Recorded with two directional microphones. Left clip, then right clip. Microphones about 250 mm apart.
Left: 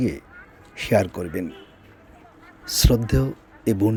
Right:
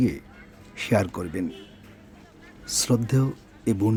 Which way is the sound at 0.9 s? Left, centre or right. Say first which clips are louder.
Left 4 dB; centre.